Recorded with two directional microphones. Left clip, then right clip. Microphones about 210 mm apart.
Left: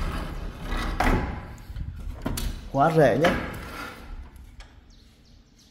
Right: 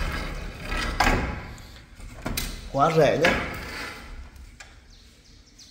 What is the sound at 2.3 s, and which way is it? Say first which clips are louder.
Door: left 1 dB; 30° left (ahead or behind).